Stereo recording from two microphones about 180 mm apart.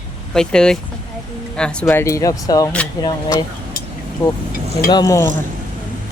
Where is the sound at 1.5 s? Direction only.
5° left (ahead or behind).